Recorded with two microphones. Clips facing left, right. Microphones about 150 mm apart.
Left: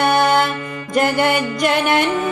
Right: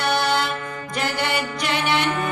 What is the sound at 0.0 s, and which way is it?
Music, 50° left (ahead or behind).